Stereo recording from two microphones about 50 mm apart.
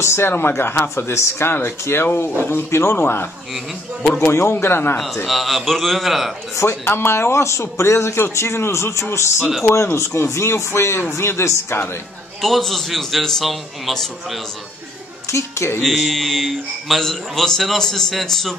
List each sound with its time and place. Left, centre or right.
0.0 s speech: left
0.5 s speech: left
5.2 s a man's voice: centre
6.5 s speech: left
12.4 s a man's voice: centre
15.2 s speech: left
15.9 s a man's voice: centre